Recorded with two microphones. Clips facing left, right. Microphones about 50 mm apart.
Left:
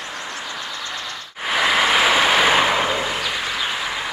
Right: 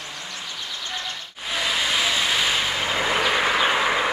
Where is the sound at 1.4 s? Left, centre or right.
Left.